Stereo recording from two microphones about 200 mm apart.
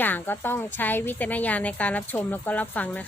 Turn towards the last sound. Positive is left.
turn(degrees=10)  # may be behind; listen again after turning